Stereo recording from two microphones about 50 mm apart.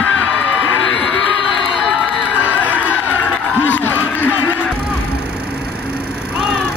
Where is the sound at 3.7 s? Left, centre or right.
Left.